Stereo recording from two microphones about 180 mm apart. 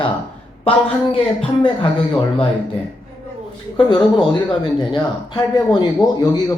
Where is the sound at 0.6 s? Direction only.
30° left (ahead or behind).